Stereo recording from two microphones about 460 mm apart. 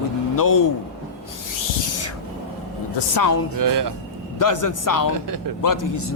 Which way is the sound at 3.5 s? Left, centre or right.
Right.